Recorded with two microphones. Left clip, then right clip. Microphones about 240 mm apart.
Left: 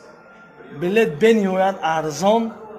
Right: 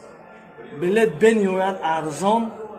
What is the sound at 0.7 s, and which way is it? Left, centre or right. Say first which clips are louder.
A man's voice: left 1 dB; left.